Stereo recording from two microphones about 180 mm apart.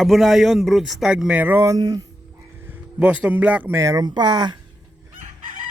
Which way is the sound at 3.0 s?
5° right (ahead or behind).